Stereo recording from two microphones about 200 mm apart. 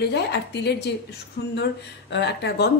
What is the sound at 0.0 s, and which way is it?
A woman's voice, 55° left (ahead or behind).